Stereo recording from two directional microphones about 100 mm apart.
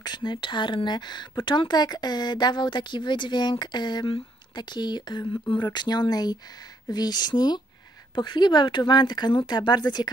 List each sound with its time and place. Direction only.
0.0 s a woman's voice: 50° left (ahead or behind)